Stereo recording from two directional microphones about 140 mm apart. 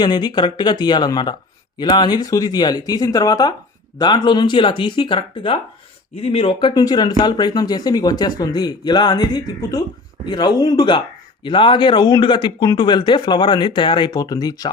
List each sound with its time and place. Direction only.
0.0 s speech: 30° left (ahead or behind)